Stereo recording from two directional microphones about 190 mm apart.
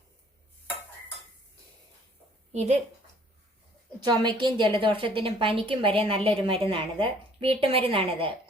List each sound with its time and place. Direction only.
2.5 s speech: 35° right (ahead or behind)
4.0 s a woman's voice: 20° right (ahead or behind)